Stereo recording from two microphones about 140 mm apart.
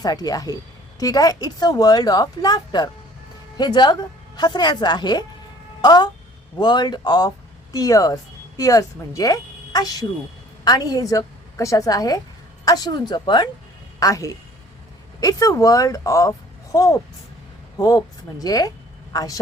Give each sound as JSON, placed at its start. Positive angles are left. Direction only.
{"t": 0.0, "sound": "a woman's voice", "side_deg": 25}